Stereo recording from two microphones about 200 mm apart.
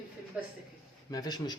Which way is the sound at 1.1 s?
20° left (ahead or behind).